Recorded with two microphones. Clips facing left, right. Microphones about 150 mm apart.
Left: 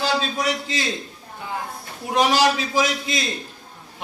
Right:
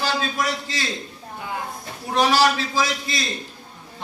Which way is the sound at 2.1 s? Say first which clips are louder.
Even; 15° left (ahead or behind).